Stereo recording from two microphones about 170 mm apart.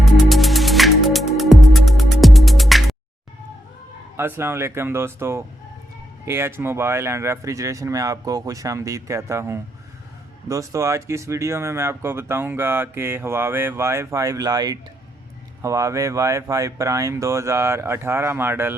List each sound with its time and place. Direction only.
0.0 s music: centre (ahead or behind)
4.2 s speech: 15° right (ahead or behind)